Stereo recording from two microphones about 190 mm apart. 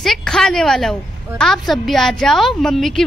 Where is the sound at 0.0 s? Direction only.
Centre (ahead or behind).